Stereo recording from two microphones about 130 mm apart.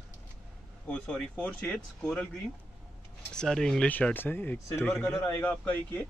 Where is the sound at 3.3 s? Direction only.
5° left (ahead or behind).